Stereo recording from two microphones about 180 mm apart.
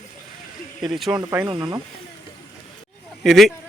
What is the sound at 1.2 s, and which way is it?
Speech, 20° right (ahead or behind).